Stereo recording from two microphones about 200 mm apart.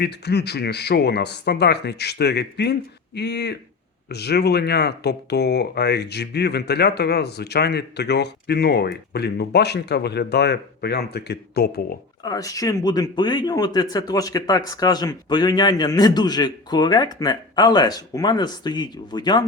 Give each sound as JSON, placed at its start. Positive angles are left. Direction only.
{"t": 0.0, "sound": "speech", "side_deg": 55}
{"t": 12.2, "sound": "speech", "side_deg": 20}